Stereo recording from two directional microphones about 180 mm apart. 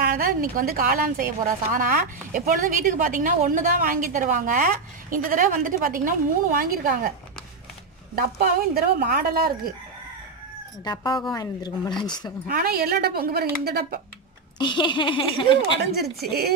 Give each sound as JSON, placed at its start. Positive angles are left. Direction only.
{"t": 0.0, "sound": "speech", "side_deg": -55}
{"t": 8.2, "sound": "speech", "side_deg": -55}
{"t": 10.8, "sound": "speech", "side_deg": 25}
{"t": 12.4, "sound": "speech", "side_deg": -55}
{"t": 14.6, "sound": "speech", "side_deg": 25}
{"t": 16.0, "sound": "speech", "side_deg": -60}